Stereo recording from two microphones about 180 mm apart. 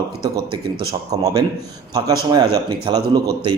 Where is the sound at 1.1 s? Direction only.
20° right (ahead or behind).